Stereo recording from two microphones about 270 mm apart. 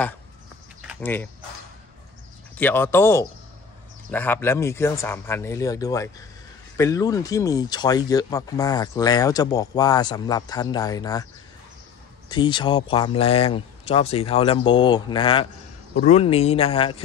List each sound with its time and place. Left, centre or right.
1.0 s speech: centre
2.5 s speech: centre
12.3 s speech: centre